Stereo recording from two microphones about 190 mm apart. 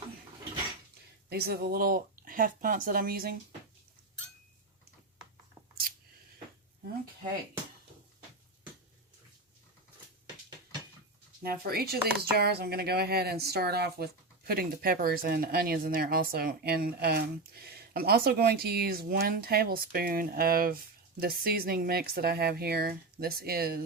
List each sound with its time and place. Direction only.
1.3 s speech: 55° right (ahead or behind)
11.4 s speech: 50° right (ahead or behind)